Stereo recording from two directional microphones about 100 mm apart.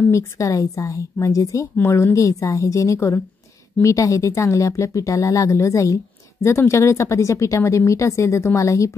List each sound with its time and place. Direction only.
0.1 s a woman's voice: 35° left (ahead or behind)